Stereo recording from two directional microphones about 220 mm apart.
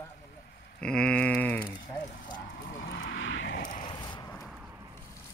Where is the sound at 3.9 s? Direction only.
20° left (ahead or behind).